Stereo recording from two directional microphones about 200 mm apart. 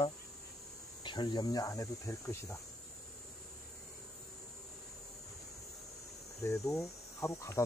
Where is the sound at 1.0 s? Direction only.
20° left (ahead or behind).